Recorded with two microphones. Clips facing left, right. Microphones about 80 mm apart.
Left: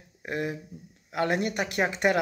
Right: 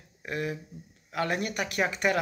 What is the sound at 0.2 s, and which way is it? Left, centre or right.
Speech, left.